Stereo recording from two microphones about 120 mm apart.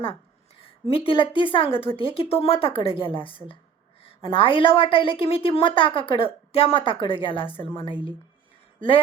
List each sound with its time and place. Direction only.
0.6 s a woman's voice: 50° left (ahead or behind)